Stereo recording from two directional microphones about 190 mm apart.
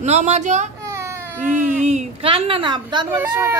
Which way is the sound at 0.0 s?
35° right (ahead or behind).